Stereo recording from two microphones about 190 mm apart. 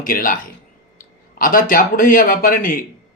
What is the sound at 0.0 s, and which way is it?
Speech, 45° left (ahead or behind).